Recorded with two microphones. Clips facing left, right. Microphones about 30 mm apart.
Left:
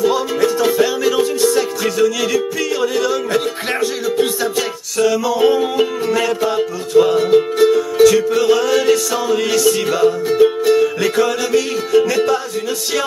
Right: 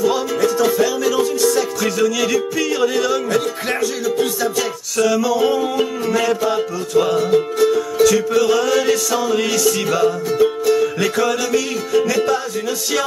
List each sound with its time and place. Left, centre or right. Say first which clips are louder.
0.0 s music: left 2 dB; centre
2.0 s music: left 2 dB; centre
3.3 s music: left 1 dB; left
4.9 s music: left 1 dB; centre
7.2 s music: left 3 dB; left
10.3 s music: left 3 dB; left
11.0 s music: left 2 dB; centre